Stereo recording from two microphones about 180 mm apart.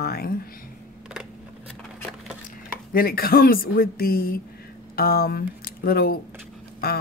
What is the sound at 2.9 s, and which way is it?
Speech, 55° left (ahead or behind).